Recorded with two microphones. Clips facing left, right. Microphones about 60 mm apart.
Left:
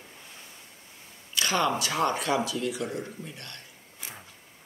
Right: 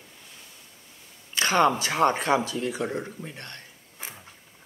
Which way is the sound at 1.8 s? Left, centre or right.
Right.